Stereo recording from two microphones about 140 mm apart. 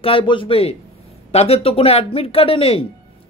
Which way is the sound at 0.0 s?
40° left (ahead or behind).